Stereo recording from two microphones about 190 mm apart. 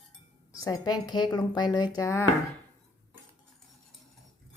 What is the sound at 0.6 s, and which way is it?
Speech, 20° left (ahead or behind).